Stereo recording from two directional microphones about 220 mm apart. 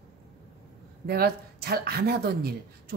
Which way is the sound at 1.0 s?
45° right (ahead or behind).